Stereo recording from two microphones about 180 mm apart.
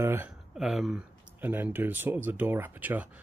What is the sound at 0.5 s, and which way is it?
Speech, centre (ahead or behind).